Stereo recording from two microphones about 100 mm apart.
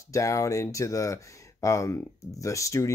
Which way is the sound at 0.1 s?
30° left (ahead or behind).